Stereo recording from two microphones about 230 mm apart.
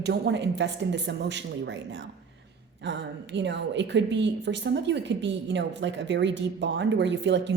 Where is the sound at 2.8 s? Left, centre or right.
Right.